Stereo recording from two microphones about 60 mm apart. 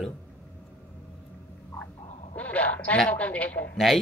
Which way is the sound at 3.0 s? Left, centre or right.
Left.